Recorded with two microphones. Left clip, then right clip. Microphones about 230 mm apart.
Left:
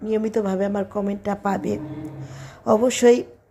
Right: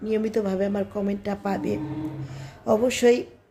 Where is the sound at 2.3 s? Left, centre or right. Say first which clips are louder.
Left 2 dB; centre.